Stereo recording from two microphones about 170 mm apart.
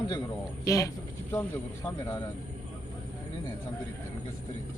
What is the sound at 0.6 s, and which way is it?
Speech, 20° left (ahead or behind).